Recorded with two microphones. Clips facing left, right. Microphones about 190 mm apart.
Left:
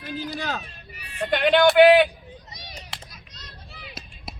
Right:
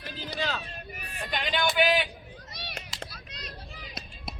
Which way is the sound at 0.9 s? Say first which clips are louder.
Right 3 dB; 50° right (ahead or behind).